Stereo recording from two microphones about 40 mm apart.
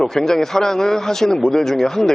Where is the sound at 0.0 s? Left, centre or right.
Centre.